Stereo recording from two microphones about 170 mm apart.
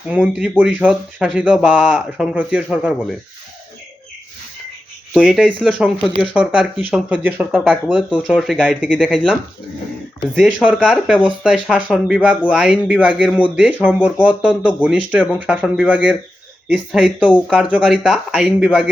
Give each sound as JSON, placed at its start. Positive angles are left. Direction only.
{"t": 0.1, "sound": "speech", "side_deg": -10}
{"t": 5.1, "sound": "speech", "side_deg": -5}
{"t": 5.5, "sound": "speech", "side_deg": 5}
{"t": 6.1, "sound": "speech", "side_deg": -30}
{"t": 6.3, "sound": "speech", "side_deg": -5}